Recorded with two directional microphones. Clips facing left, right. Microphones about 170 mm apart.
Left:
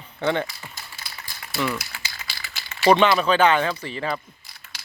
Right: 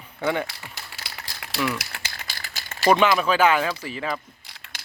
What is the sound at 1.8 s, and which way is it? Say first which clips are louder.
Crumpling: right 1 dB; 60° right (ahead or behind).